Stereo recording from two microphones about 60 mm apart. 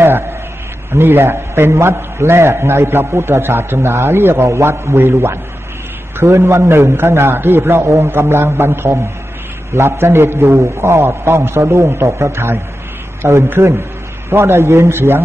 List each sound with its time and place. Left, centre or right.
0.9 s a man's voice: right
4.9 s a man's voice: right